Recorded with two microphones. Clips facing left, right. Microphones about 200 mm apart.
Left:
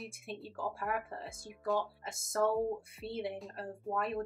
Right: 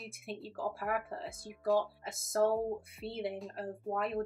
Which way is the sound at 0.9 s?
60° right (ahead or behind).